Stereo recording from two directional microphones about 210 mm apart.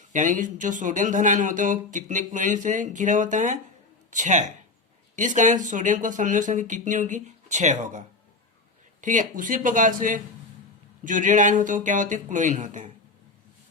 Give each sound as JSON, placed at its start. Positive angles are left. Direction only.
{"t": 0.1, "sound": "speech", "side_deg": -35}